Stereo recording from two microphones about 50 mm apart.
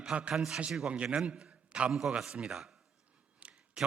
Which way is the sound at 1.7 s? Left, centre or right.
Right.